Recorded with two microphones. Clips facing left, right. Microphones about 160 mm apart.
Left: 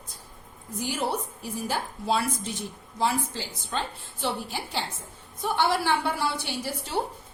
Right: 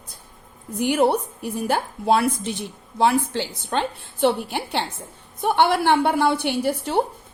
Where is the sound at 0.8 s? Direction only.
60° right (ahead or behind).